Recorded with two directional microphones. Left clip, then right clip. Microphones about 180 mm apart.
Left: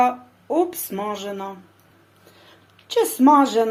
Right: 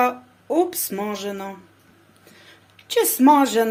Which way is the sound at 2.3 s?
5° right (ahead or behind).